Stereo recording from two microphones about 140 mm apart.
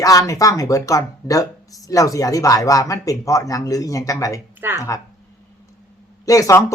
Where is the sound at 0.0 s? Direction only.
25° left (ahead or behind).